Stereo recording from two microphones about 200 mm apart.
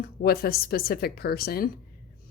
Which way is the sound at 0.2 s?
50° left (ahead or behind).